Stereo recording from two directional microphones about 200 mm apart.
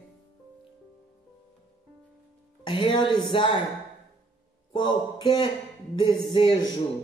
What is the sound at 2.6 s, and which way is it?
Speech, 25° left (ahead or behind).